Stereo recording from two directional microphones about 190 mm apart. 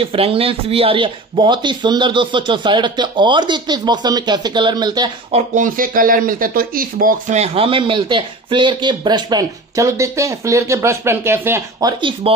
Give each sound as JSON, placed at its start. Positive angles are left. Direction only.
{"t": 0.0, "sound": "speech", "side_deg": -30}
{"t": 5.5, "sound": "speech", "side_deg": -45}
{"t": 12.0, "sound": "speech", "side_deg": -25}